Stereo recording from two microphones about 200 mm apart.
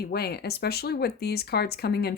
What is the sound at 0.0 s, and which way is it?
Speech, 50° left (ahead or behind).